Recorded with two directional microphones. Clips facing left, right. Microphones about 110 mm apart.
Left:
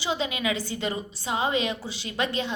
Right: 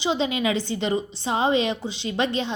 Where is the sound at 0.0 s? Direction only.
25° right (ahead or behind).